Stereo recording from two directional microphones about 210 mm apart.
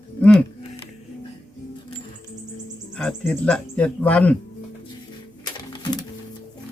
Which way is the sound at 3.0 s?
5° left (ahead or behind).